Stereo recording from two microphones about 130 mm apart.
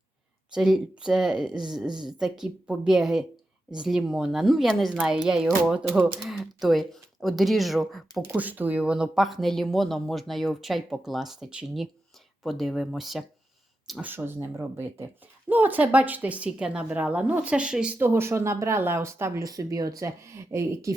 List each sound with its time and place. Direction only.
0.5 s a woman's voice: 5° right (ahead or behind)
8.3 s speech: 15° right (ahead or behind)
14.0 s a woman's voice: 15° right (ahead or behind)